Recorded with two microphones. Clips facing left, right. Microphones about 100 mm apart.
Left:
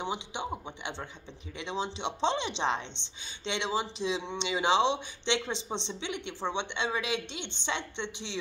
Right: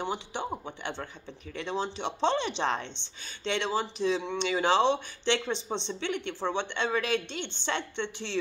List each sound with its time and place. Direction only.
0.0 s a man's voice: 20° left (ahead or behind)